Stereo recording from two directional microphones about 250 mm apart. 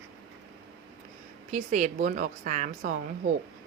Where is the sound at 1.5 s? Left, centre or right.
Right.